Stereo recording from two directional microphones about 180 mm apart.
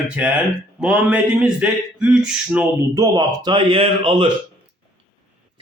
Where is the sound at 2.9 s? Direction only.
20° right (ahead or behind).